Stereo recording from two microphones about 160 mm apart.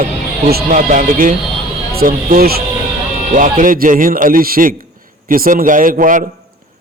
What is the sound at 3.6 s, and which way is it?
A man's voice, 55° right (ahead or behind).